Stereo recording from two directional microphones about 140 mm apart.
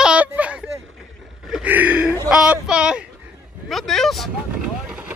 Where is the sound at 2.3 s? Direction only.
5° right (ahead or behind).